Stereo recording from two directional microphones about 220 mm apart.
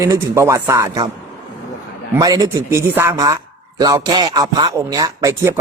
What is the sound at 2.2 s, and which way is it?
Speech, 15° right (ahead or behind).